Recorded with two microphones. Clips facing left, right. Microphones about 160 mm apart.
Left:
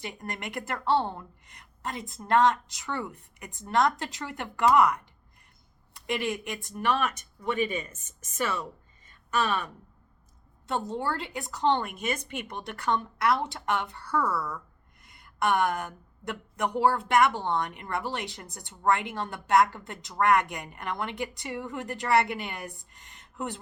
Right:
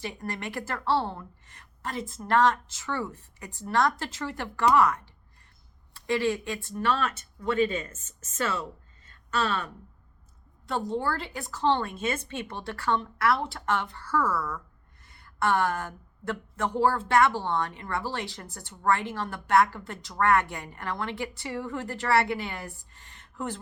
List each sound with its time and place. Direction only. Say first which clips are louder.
0.0 s a woman's voice: right 2 dB; 20° left (ahead or behind)
9.0 s a sound: left 1 dB; 15° left (ahead or behind)
10.7 s speech: right 1 dB; 20° left (ahead or behind)